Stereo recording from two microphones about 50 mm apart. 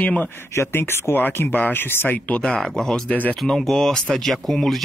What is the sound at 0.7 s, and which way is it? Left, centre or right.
Speech, left.